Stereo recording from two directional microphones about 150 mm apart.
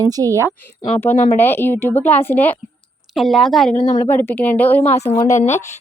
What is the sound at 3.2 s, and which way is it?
Speech, centre (ahead or behind).